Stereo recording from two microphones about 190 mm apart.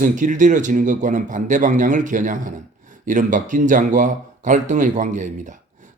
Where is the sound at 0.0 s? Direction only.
40° right (ahead or behind).